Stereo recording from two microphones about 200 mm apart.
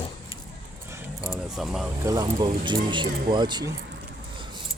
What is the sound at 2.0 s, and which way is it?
Speech, 20° right (ahead or behind).